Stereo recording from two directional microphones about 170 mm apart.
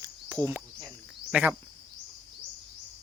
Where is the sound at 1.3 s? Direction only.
10° right (ahead or behind).